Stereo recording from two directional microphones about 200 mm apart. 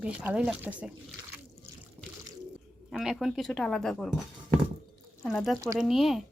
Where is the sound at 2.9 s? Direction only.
Centre (ahead or behind).